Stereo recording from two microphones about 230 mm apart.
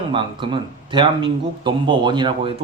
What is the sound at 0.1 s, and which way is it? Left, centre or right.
Speech, right.